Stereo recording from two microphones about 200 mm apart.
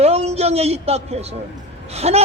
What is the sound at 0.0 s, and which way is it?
A man's voice, 30° right (ahead or behind).